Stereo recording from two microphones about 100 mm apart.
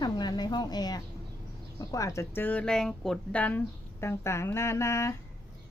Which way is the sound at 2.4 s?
10° left (ahead or behind).